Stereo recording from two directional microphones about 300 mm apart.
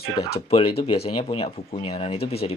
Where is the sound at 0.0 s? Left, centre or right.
Centre.